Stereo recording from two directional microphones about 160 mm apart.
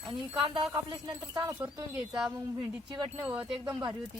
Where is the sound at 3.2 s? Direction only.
10° right (ahead or behind).